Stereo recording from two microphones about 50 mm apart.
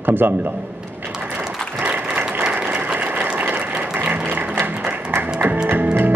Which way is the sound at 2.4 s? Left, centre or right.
Right.